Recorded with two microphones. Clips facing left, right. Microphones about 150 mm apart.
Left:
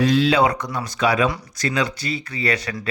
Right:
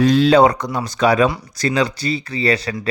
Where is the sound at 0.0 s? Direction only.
45° right (ahead or behind).